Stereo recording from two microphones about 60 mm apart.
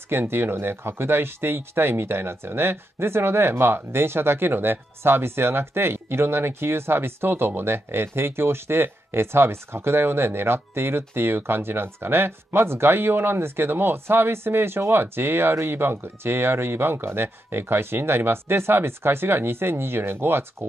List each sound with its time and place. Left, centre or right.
0.1 s speech: right